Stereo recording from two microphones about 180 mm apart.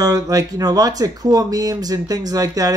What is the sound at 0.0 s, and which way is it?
Speech, 20° right (ahead or behind).